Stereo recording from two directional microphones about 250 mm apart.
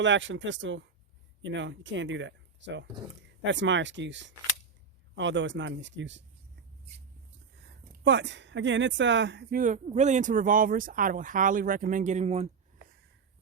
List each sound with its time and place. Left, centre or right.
0.0 s speech: right
8.0 s speech: right